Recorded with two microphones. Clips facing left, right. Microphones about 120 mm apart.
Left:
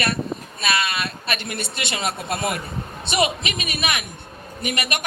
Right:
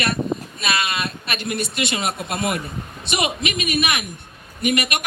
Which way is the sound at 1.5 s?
30° left (ahead or behind).